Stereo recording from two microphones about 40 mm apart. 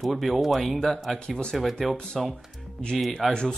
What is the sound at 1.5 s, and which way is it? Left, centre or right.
Speech, centre.